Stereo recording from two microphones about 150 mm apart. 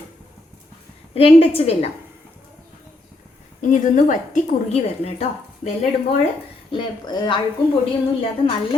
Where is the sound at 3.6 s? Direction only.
60° left (ahead or behind).